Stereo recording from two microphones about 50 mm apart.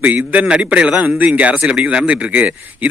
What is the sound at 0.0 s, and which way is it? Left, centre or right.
Speech, right.